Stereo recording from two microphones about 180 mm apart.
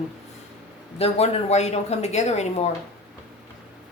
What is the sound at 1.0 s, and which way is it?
A woman's voice, 35° left (ahead or behind).